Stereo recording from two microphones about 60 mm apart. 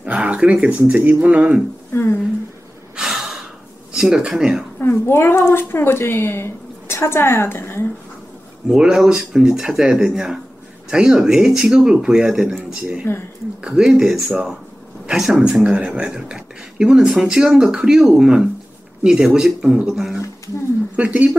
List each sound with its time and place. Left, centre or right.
0.0 s speech: right
3.0 s gasp: centre
3.9 s speech: centre
4.7 s speech: left
8.6 s speech: centre
13.0 s speech: left
13.7 s speech: centre
20.9 s speech: right